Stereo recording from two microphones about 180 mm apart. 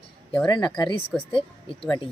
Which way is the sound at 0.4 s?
25° left (ahead or behind).